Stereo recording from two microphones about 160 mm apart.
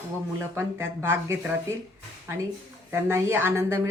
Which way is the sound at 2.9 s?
15° right (ahead or behind).